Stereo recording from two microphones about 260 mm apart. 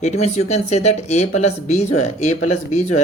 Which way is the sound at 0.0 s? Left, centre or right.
Left.